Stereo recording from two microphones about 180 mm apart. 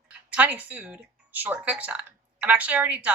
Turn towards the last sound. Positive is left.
turn(degrees=-10)  # may be behind; listen again after turning